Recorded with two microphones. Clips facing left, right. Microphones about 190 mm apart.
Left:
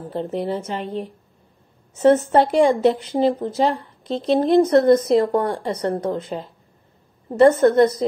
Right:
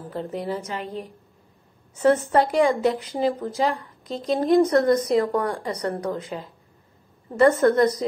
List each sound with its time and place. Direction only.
0.1 s a woman's voice: 25° left (ahead or behind)